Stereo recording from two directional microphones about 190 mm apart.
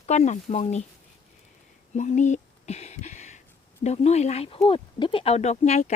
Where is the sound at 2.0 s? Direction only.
40° left (ahead or behind).